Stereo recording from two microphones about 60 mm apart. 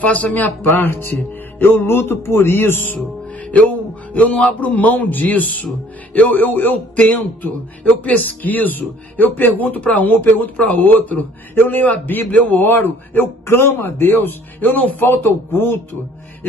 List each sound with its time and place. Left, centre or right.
0.0 s a man's voice: left
3.5 s a man's voice: left